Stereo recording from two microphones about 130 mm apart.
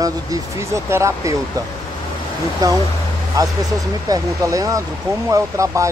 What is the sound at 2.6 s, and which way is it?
Speech, 30° right (ahead or behind).